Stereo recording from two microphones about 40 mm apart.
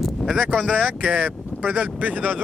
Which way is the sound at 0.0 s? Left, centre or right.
Centre.